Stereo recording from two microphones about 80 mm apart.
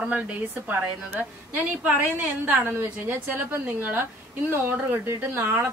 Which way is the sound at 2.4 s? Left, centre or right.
Right.